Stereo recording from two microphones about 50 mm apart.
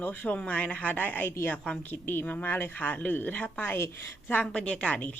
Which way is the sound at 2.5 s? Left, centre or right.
Left.